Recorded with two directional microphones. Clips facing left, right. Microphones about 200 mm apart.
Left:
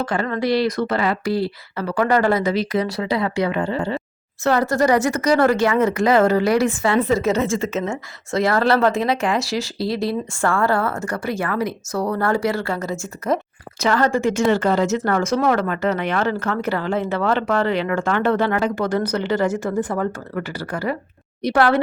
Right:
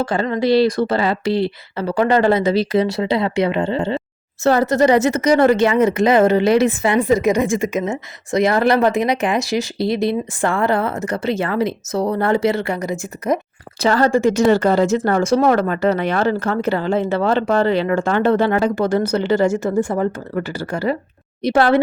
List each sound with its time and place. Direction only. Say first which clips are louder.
0.0 s speech: right 3 dB; 30° right (ahead or behind)
13.8 s speech: right 3 dB; 30° right (ahead or behind)